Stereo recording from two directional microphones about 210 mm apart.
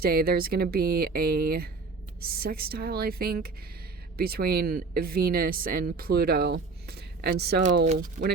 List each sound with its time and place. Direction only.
0.0 s speech: 45° right (ahead or behind)
7.6 s speech: 35° right (ahead or behind)